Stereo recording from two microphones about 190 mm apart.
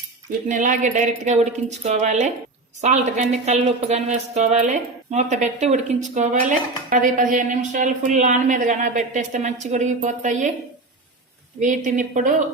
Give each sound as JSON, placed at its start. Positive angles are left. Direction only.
{"t": 0.4, "sound": "speech", "side_deg": -40}
{"t": 11.6, "sound": "speech", "side_deg": -40}